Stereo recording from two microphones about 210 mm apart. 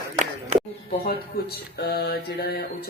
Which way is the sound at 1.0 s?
50° left (ahead or behind).